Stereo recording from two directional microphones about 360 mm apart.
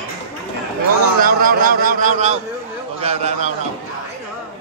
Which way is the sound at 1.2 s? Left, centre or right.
Right.